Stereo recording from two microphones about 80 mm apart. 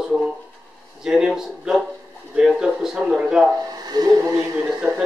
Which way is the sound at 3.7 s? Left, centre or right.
Right.